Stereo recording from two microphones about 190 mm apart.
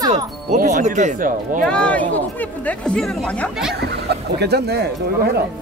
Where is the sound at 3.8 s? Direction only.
60° right (ahead or behind).